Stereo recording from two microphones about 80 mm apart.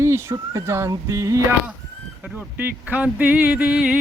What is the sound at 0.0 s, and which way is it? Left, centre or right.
Speech, right.